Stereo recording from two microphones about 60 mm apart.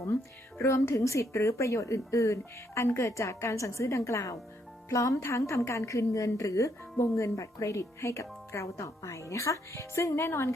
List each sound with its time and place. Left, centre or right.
0.6 s a woman's voice: left